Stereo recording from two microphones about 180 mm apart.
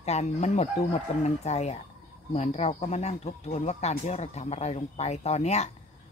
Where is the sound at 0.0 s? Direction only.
40° left (ahead or behind).